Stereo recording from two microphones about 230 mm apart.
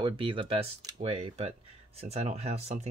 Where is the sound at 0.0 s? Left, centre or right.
Right.